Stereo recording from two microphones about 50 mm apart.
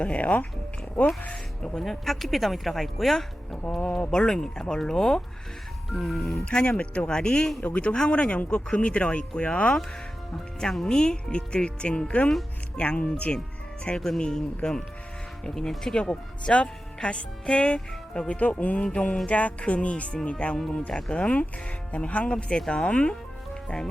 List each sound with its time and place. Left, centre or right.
0.0 s speech: left
1.3 s speech: centre
6.4 s speech: left
7.6 s speech: left
10.6 s speech: centre
13.8 s speech: centre